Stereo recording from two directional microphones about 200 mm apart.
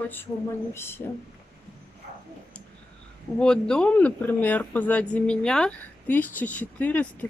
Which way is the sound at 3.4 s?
5° left (ahead or behind).